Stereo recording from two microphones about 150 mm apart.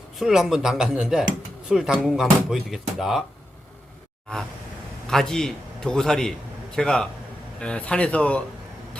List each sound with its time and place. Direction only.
0.2 s speech: 5° right (ahead or behind)
5.0 s a man's voice: 5° left (ahead or behind)